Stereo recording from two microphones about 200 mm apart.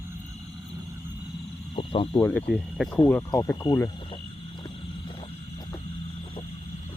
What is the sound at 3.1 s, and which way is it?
Speech, 10° left (ahead or behind).